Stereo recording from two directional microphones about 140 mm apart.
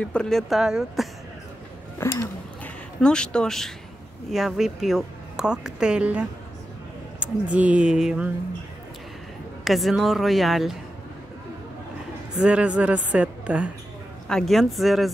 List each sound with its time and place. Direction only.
0.0 s speech: 5° left (ahead or behind)
2.0 s a sound: 15° left (ahead or behind)
3.0 s a woman's voice: 5° left (ahead or behind)
9.7 s speech: centre (ahead or behind)
12.4 s a woman's voice: 10° right (ahead or behind)
14.3 s speech: centre (ahead or behind)